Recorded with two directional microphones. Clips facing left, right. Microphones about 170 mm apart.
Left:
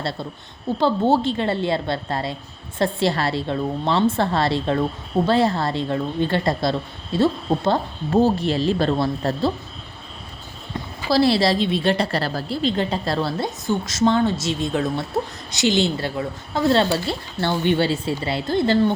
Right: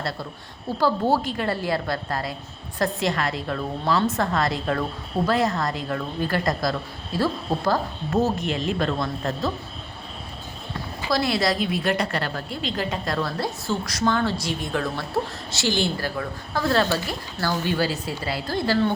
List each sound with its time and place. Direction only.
0.8 s a woman's voice: 25° left (ahead or behind)
10.8 s a woman's voice: 30° left (ahead or behind)